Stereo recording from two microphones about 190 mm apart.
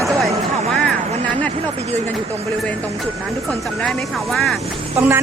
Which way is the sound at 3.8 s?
Centre (ahead or behind).